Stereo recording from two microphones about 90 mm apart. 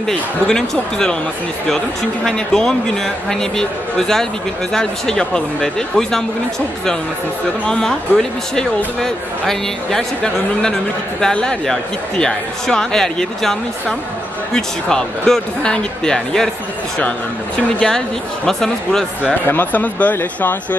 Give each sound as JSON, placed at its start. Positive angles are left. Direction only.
{"t": 0.0, "sound": "speech", "side_deg": 5}
{"t": 2.2, "sound": "speech", "side_deg": 5}
{"t": 4.7, "sound": "speech", "side_deg": 5}
{"t": 7.6, "sound": "speech", "side_deg": 5}
{"t": 17.7, "sound": "speech", "side_deg": 10}
{"t": 19.4, "sound": "speech", "side_deg": 20}